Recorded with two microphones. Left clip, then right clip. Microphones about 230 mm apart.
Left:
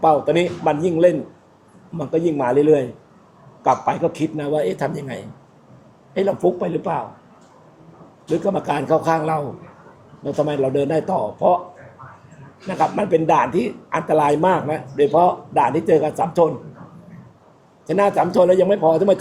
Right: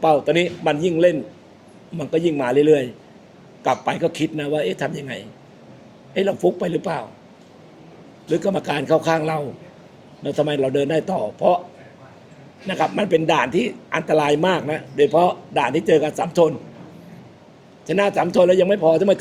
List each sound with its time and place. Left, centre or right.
0.0 s a man's voice: right
8.3 s a man's voice: right
12.6 s a man's voice: right
17.8 s a man's voice: right